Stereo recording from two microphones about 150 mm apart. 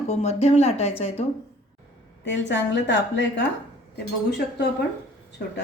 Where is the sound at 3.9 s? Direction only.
90° left.